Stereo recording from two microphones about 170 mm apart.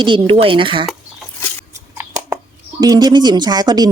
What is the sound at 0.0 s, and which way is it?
Speech, 30° right (ahead or behind).